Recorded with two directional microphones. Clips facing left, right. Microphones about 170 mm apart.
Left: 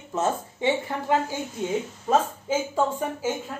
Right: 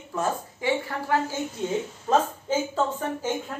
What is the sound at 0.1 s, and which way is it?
A woman's voice, 25° left (ahead or behind).